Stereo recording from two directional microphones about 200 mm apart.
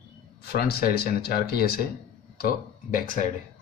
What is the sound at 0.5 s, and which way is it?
Speech, 50° left (ahead or behind).